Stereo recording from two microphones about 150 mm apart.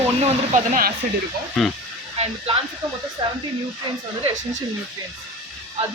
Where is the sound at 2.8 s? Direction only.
30° right (ahead or behind).